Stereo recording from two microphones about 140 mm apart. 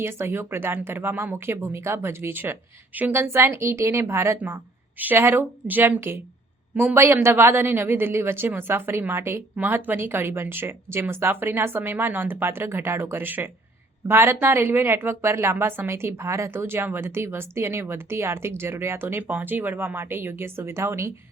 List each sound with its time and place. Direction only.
0.0 s speech: 15° right (ahead or behind)